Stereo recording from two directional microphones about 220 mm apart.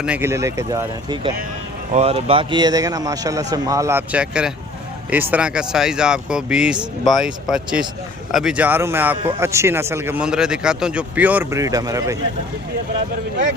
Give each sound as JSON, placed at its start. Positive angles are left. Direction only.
{"t": 0.0, "sound": "speech", "side_deg": -10}
{"t": 1.9, "sound": "speech", "side_deg": -30}